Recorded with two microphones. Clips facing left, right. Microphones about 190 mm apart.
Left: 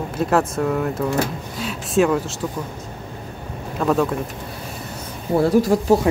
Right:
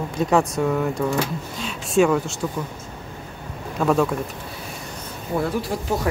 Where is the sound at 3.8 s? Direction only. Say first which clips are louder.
Even; centre (ahead or behind).